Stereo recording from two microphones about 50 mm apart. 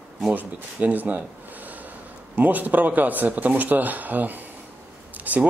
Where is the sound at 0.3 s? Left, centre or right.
Right.